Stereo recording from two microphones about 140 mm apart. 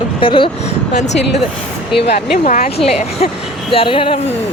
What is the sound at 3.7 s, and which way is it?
Speech, 40° left (ahead or behind).